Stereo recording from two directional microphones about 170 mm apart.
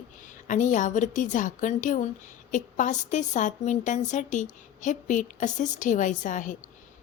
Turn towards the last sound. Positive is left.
turn(degrees=50)  # may be behind; listen again after turning